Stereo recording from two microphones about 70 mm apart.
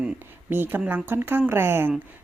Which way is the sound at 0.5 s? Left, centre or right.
Right.